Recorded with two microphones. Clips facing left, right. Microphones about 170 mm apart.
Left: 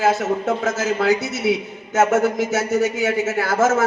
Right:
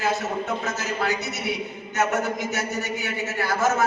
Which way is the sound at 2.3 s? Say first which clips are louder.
Left 9 dB; 90° left.